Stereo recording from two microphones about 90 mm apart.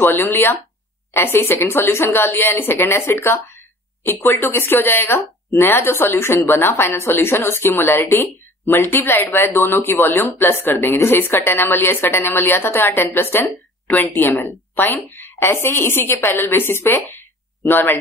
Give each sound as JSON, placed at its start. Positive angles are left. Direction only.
{"t": 0.0, "sound": "a woman's voice", "side_deg": 25}